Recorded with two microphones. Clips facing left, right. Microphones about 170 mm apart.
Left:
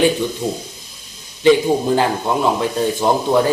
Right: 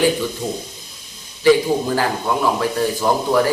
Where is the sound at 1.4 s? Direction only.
20° left (ahead or behind).